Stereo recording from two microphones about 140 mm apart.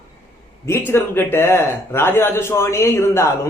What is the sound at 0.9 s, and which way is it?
Speech, 15° left (ahead or behind).